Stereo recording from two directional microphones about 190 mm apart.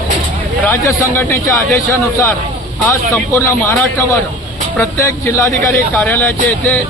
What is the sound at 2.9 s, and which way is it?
Speech, 10° left (ahead or behind).